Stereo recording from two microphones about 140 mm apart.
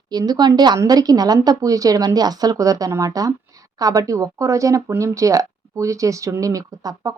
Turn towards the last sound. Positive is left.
turn(degrees=-25)  # may be behind; listen again after turning